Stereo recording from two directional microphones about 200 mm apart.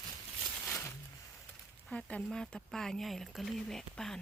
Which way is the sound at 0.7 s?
10° left (ahead or behind).